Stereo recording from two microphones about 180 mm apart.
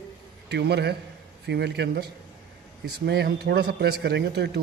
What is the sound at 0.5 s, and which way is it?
A man's voice, 65° right (ahead or behind).